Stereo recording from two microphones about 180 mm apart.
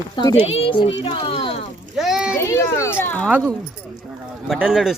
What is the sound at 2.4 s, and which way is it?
Speech, 15° left (ahead or behind).